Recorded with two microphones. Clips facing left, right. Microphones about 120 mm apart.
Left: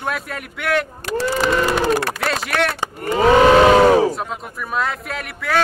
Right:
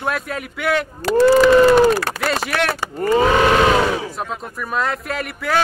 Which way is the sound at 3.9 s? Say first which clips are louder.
Left 10 dB; 45° left (ahead or behind).